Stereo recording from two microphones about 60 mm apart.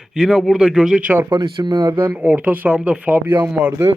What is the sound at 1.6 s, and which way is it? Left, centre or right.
Speech, right.